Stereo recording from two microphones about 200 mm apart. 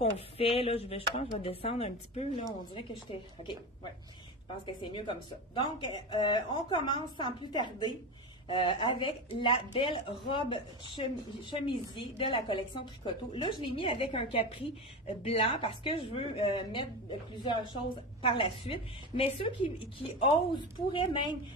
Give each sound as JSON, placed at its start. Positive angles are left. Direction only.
{"t": 0.0, "sound": "a woman's voice", "side_deg": 30}
{"t": 4.9, "sound": "a woman's voice", "side_deg": 25}